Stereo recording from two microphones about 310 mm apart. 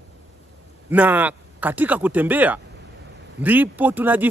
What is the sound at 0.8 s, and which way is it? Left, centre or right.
Speech, centre.